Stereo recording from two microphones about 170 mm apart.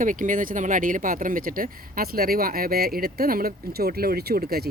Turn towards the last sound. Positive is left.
turn(degrees=-65)  # may be behind; listen again after turning